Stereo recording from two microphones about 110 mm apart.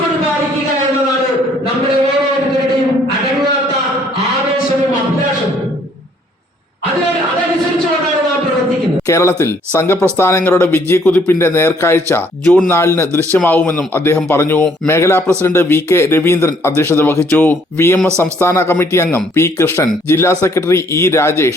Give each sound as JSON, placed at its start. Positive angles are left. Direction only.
{"t": 9.0, "sound": "speech", "side_deg": 25}